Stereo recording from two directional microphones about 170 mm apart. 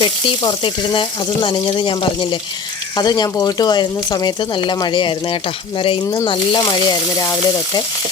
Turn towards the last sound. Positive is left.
turn(degrees=25)  # may be behind; listen again after turning